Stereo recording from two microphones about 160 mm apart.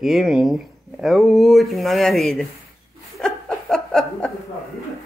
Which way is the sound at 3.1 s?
5° left (ahead or behind).